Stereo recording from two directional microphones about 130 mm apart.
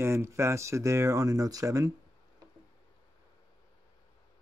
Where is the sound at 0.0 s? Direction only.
20° right (ahead or behind).